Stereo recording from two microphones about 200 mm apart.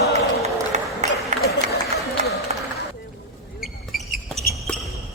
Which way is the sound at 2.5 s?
30° right (ahead or behind).